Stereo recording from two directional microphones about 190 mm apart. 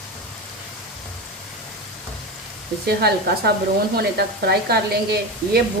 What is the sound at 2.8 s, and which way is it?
A woman's voice, 55° right (ahead or behind).